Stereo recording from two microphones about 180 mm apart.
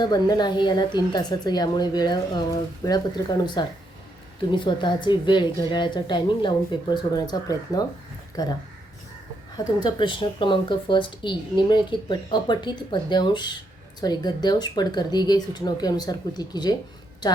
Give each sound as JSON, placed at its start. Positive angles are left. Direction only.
{"t": 0.0, "sound": "a woman's voice", "side_deg": 25}
{"t": 9.8, "sound": "a woman's voice", "side_deg": 25}